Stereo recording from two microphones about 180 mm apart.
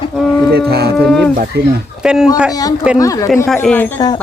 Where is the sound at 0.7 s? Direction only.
65° right (ahead or behind).